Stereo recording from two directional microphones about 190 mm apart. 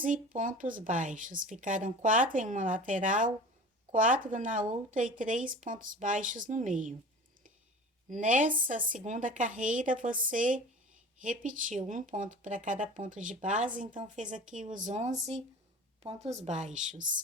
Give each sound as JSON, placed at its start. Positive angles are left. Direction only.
{"t": 0.0, "sound": "speech", "side_deg": -45}
{"t": 8.1, "sound": "speech", "side_deg": -40}